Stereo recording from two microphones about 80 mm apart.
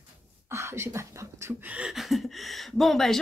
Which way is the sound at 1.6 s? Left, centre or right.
Centre.